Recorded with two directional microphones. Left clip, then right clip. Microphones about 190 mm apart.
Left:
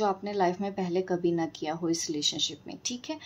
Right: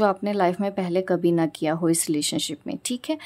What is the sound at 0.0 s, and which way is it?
A woman's voice, 50° right (ahead or behind).